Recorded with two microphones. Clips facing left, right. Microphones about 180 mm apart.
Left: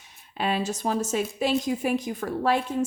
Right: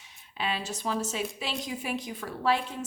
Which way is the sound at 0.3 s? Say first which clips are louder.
Left 6 dB; 45° left (ahead or behind).